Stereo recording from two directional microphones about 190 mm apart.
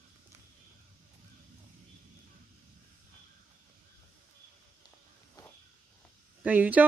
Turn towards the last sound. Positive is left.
turn(degrees=-10)  # may be behind; listen again after turning